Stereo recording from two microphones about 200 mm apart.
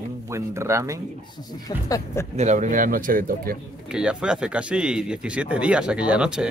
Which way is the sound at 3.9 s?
5° right (ahead or behind).